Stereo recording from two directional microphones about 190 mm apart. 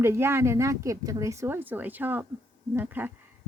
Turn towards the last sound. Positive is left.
turn(degrees=-10)  # may be behind; listen again after turning